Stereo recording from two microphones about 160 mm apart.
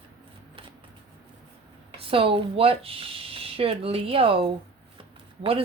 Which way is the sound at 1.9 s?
35° right (ahead or behind).